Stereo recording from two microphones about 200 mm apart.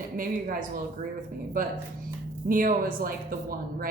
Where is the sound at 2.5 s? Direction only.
45° right (ahead or behind).